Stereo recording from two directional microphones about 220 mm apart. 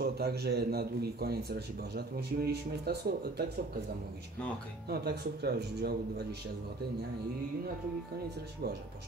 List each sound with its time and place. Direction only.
0.0 s a man's voice: 45° right (ahead or behind)
4.8 s a man's voice: 45° right (ahead or behind)